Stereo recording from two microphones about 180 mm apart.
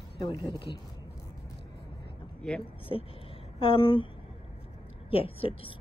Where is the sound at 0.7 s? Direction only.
25° left (ahead or behind).